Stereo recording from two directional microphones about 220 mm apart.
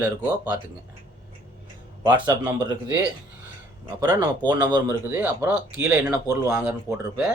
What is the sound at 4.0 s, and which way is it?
Speech, 10° right (ahead or behind).